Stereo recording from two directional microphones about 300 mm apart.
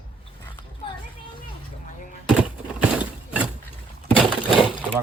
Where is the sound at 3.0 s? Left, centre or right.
Centre.